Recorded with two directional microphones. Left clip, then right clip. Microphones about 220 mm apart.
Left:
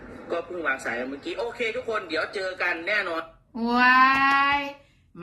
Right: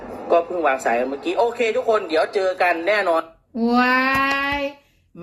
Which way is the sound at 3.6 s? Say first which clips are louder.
Even; 10° left (ahead or behind).